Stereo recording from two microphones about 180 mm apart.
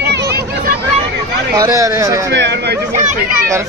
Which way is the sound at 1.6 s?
15° right (ahead or behind).